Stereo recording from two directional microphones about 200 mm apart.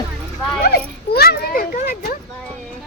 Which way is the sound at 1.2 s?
50° left (ahead or behind).